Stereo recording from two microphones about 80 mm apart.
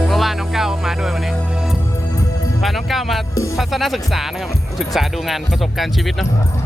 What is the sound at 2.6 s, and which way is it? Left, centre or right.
Speech, centre.